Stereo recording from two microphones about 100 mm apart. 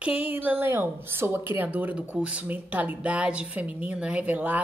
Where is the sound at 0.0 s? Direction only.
15° right (ahead or behind).